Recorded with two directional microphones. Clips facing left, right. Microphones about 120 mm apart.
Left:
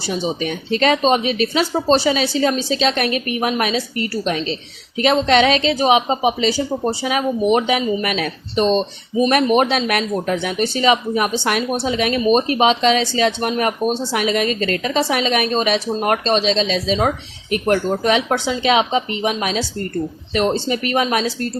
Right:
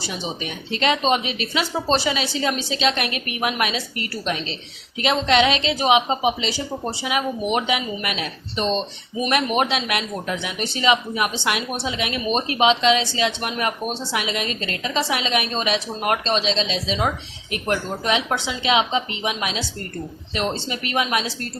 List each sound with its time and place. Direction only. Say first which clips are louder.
0.1 s speech: left 9 dB; 40° left (ahead or behind)